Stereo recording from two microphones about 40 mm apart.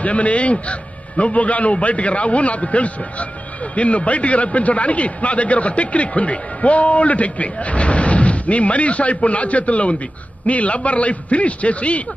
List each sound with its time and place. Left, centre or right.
0.0 s a man's voice: left